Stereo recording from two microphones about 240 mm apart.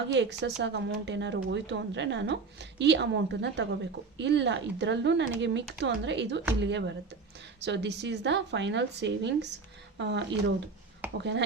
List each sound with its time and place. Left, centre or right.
0.1 s speech: right